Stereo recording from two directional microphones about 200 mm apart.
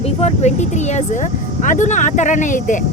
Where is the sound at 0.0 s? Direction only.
35° left (ahead or behind).